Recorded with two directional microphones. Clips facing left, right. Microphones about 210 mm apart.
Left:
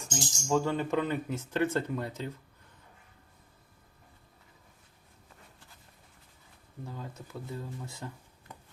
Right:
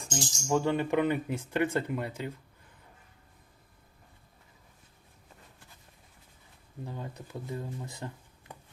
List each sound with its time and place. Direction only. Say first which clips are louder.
0.1 s speech: even; 15° right (ahead or behind)
6.8 s speech: right 2 dB; 15° right (ahead or behind)